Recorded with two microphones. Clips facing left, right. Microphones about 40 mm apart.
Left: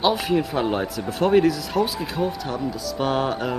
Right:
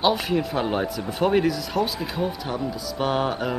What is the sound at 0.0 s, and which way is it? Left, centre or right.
A woman's voice, centre.